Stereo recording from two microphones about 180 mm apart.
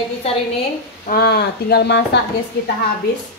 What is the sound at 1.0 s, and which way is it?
Speech, 60° left (ahead or behind).